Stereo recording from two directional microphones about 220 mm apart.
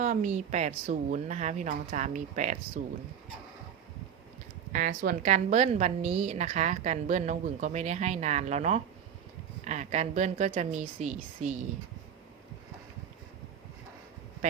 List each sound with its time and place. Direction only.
0.0 s a woman's voice: 35° right (ahead or behind)
4.7 s a woman's voice: 35° right (ahead or behind)